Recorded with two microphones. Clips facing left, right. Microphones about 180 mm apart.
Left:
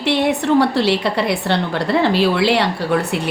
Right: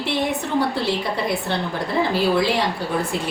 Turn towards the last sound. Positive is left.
turn(degrees=70)  # may be behind; listen again after turning